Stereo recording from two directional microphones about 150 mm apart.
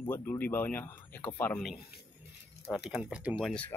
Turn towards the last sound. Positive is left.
turn(degrees=5)  # may be behind; listen again after turning